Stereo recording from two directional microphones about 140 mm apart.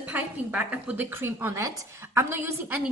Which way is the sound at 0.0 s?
10° right (ahead or behind).